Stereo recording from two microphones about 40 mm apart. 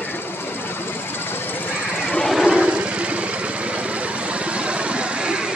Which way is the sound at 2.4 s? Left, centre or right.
Right.